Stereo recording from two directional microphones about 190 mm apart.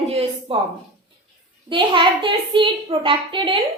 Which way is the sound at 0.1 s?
30° right (ahead or behind).